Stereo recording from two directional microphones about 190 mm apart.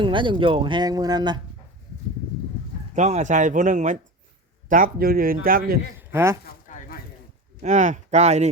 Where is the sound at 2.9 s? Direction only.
40° right (ahead or behind).